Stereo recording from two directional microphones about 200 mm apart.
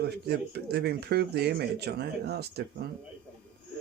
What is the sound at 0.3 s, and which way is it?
Speech, 55° right (ahead or behind).